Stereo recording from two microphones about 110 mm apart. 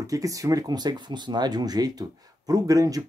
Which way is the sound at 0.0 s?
30° right (ahead or behind).